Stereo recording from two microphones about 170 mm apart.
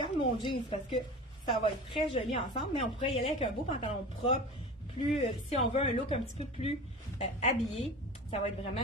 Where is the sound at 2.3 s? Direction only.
35° left (ahead or behind).